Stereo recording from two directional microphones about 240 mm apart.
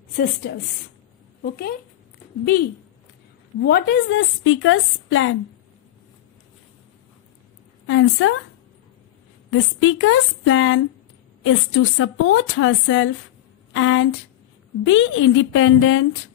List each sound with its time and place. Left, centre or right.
0.2 s a woman's voice: left
3.6 s a woman's voice: left
7.8 s a woman's voice: left
9.5 s a woman's voice: left